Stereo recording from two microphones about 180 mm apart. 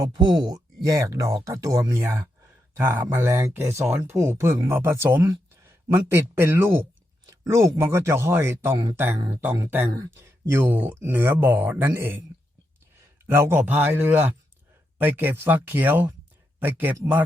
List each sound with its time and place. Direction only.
0.0 s speech: 25° right (ahead or behind)
7.3 s a sound: 15° right (ahead or behind)
7.8 s speech: 15° right (ahead or behind)
13.2 s speech: 10° right (ahead or behind)